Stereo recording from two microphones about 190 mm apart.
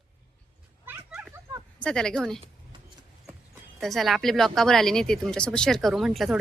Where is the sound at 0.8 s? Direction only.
10° right (ahead or behind).